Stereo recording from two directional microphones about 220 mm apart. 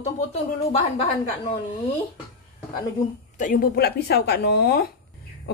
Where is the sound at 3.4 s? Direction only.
40° left (ahead or behind).